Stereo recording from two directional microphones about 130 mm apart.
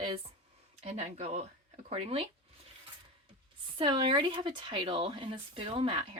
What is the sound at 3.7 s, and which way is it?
Speech, 40° right (ahead or behind).